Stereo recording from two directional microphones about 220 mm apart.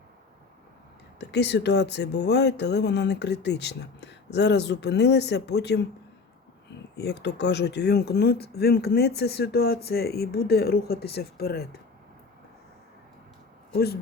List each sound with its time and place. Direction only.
1.2 s speech: 50° left (ahead or behind)
6.9 s speech: 50° left (ahead or behind)
13.7 s speech: 45° left (ahead or behind)